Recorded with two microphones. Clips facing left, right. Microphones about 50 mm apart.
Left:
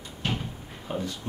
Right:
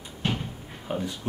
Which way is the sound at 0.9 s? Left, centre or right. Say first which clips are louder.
Right 1 dB; centre.